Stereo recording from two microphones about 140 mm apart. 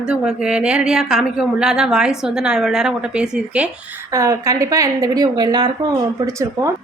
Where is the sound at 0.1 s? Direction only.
5° right (ahead or behind).